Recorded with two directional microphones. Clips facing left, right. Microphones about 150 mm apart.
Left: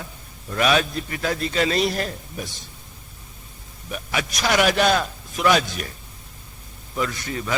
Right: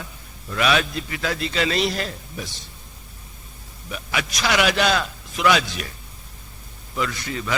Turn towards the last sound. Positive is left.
turn(degrees=40)  # may be behind; listen again after turning